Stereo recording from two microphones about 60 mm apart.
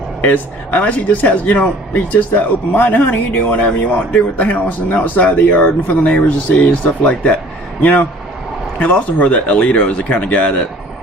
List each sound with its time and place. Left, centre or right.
0.2 s a man's voice: left